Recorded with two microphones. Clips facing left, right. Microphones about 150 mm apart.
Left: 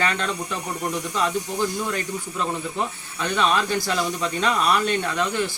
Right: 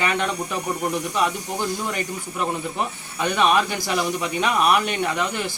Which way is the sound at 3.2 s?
15° right (ahead or behind).